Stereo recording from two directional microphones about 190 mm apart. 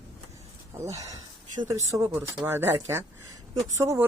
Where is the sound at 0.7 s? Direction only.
15° right (ahead or behind).